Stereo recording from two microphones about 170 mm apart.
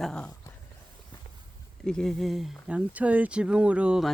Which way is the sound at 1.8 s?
5° left (ahead or behind).